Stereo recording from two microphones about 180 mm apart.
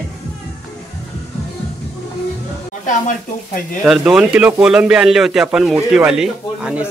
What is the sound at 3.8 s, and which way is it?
A man's voice, 5° right (ahead or behind).